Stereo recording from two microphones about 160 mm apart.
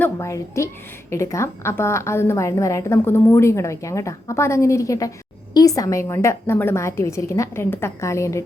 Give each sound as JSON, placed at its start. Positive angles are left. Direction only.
{"t": 0.0, "sound": "a woman's voice", "side_deg": 20}